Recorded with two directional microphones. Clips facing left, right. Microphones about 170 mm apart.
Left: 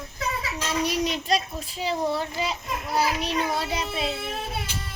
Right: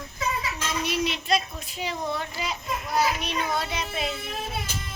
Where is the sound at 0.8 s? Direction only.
40° left (ahead or behind).